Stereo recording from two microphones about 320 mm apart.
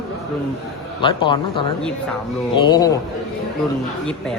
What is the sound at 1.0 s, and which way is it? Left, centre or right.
Speech, centre.